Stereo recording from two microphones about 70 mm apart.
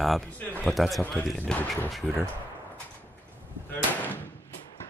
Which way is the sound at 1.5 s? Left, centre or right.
Left.